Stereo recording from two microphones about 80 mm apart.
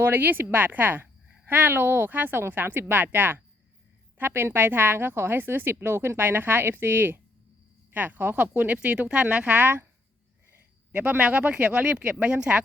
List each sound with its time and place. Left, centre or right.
0.0 s speech: right
10.9 s speech: centre